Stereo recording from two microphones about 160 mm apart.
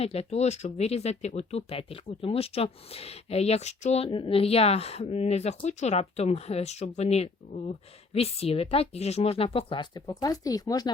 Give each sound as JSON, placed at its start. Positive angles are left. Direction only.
{"t": 0.0, "sound": "speech", "side_deg": 40}